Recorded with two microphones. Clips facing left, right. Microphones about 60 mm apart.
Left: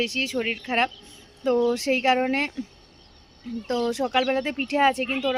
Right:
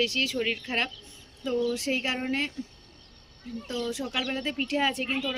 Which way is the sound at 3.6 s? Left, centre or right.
Left.